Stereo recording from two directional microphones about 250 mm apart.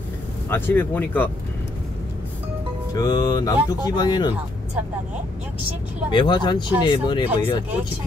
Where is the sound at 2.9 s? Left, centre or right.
Centre.